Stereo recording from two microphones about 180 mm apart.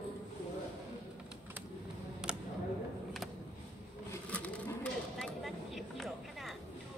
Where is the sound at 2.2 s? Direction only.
5° right (ahead or behind).